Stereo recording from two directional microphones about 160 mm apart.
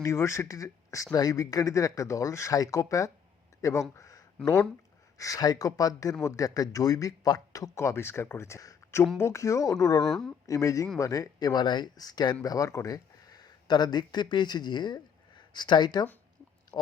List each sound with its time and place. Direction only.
0.0 s speech: 20° left (ahead or behind)
10.0 s speech: centre (ahead or behind)
10.4 s speech: 20° left (ahead or behind)
16.7 s a sound: 25° left (ahead or behind)